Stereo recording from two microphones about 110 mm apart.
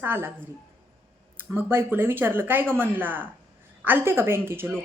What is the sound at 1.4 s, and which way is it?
A woman's voice, 20° right (ahead or behind).